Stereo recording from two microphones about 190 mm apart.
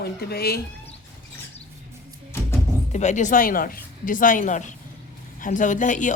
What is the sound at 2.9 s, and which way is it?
A woman's voice, 40° left (ahead or behind).